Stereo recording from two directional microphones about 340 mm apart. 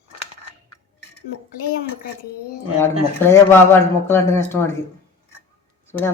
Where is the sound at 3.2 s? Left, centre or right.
Centre.